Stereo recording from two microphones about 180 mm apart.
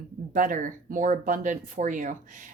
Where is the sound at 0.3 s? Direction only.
45° right (ahead or behind).